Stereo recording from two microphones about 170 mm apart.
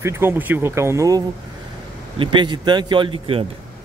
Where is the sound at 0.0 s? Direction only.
10° right (ahead or behind).